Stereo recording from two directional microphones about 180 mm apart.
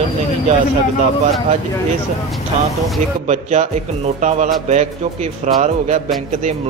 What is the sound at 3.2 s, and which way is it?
A man's voice, 40° right (ahead or behind).